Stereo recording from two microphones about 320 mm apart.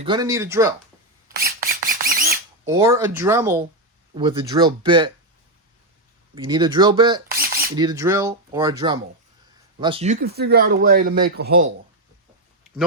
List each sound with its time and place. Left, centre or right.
0.0 s speech: centre
1.4 s a sound: right
2.6 s speech: centre
6.3 s speech: centre
7.3 s a sound: right
7.8 s speech: centre; by 11.7 s right